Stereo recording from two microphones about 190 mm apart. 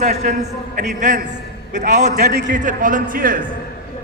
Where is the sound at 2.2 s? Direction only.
55° right (ahead or behind).